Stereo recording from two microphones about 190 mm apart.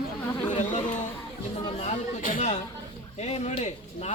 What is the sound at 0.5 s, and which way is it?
A man's voice, 40° left (ahead or behind).